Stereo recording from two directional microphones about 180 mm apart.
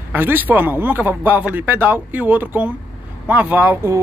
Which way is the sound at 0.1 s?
10° right (ahead or behind).